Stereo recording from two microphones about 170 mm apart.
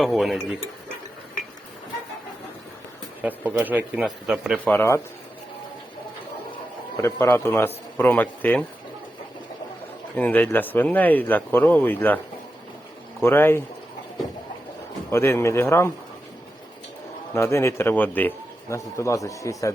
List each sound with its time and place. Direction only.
0.0 s speech: centre (ahead or behind)
3.2 s a man's voice: 10° right (ahead or behind)
4.6 s a man's voice: 10° left (ahead or behind)
6.9 s a man's voice: 15° left (ahead or behind)
10.2 s a man's voice: 10° left (ahead or behind)
13.2 s a man's voice: 15° left (ahead or behind)
15.1 s a man's voice: 15° left (ahead or behind)
17.3 s a man's voice: 15° left (ahead or behind)